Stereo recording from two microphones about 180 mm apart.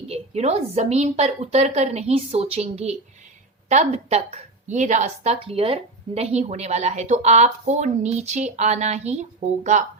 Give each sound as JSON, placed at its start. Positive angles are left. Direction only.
{"t": 0.1, "sound": "a woman's voice", "side_deg": -35}